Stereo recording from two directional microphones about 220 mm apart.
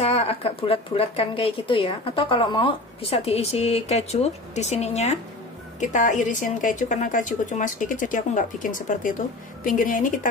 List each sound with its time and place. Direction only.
0.0 s a woman's voice: 25° left (ahead or behind)